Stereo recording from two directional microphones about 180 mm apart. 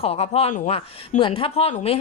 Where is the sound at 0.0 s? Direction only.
35° left (ahead or behind).